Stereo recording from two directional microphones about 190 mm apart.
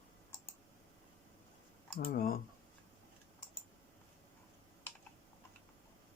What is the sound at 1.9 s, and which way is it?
Speech, 50° left (ahead or behind).